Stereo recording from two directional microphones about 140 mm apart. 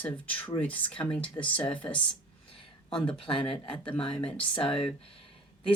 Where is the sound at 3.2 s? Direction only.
40° left (ahead or behind).